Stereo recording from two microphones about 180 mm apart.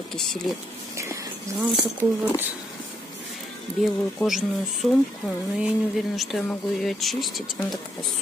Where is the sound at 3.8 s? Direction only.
Centre (ahead or behind).